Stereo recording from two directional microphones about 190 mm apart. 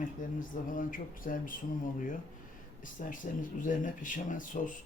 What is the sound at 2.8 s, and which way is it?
Speech, 45° left (ahead or behind).